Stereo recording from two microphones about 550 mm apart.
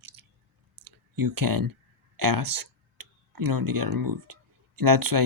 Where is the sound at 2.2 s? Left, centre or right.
Right.